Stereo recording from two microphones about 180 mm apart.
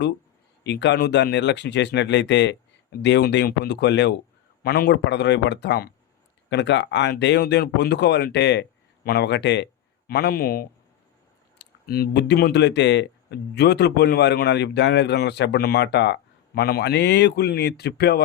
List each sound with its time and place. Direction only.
0.6 s speech: 75° left (ahead or behind)
4.6 s speech: 60° left (ahead or behind); by 9.6 s 75° left (ahead or behind)
10.1 s speech: 60° left (ahead or behind)
16.6 s speech: 60° left (ahead or behind)